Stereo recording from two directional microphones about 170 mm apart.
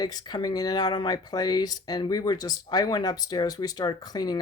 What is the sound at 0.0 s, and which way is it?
Speech, 25° left (ahead or behind).